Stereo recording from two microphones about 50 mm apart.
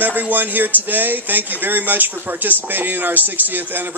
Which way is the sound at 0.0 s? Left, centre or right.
Right.